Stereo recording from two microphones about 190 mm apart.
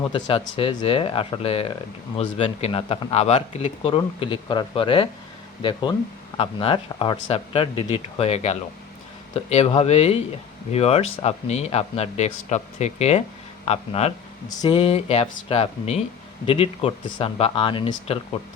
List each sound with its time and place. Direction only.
0.0 s a man's voice: 25° left (ahead or behind)
6.3 s a man's voice: 25° left (ahead or behind)